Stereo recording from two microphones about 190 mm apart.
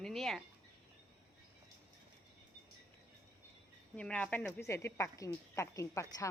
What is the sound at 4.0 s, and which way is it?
Speech, 5° left (ahead or behind).